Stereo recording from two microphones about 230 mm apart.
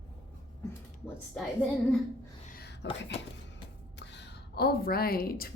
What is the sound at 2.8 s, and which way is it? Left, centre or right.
Speech, left.